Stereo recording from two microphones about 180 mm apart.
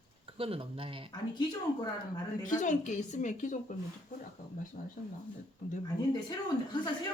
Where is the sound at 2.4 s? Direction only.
45° left (ahead or behind).